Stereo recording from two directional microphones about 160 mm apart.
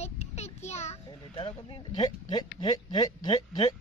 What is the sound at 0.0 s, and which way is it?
A child's voice, 45° left (ahead or behind).